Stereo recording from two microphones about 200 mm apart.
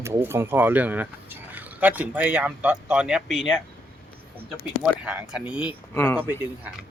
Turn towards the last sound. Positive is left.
turn(degrees=-10)  # may be behind; listen again after turning